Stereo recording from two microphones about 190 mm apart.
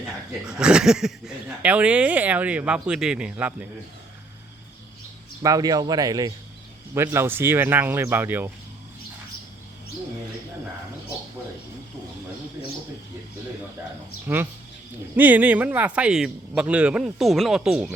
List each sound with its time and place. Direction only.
0.4 s speech: 5° right (ahead or behind)
5.4 s speech: 20° right (ahead or behind)
15.1 s speech: 10° right (ahead or behind)